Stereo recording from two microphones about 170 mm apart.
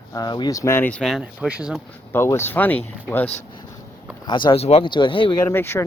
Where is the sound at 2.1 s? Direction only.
15° left (ahead or behind).